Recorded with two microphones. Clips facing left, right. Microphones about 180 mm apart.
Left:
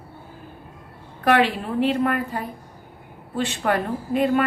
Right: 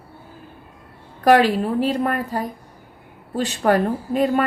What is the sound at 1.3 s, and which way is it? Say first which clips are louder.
Speech: right 4 dB; 40° right (ahead or behind).